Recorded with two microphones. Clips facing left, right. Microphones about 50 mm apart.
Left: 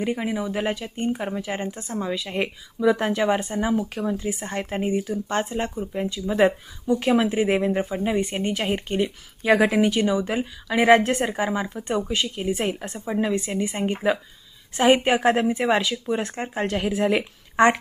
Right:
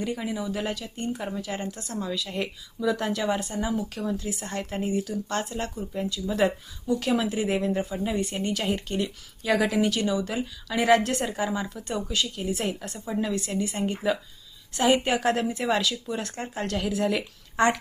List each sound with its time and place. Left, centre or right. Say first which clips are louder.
0.0 s speech: left 4 dB; left